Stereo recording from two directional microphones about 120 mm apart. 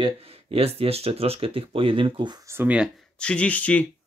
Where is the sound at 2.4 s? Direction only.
15° right (ahead or behind).